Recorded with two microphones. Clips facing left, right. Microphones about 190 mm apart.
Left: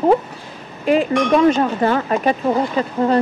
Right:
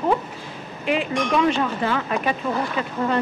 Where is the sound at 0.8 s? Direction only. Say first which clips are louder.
Left 7 dB; 40° left (ahead or behind).